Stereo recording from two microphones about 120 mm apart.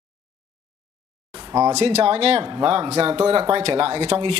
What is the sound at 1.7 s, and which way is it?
Speech, 65° right (ahead or behind).